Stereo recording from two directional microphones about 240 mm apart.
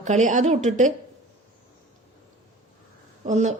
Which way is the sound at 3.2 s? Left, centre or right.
Right.